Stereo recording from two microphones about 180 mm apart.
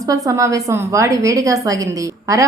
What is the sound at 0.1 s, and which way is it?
A woman's voice, 20° right (ahead or behind).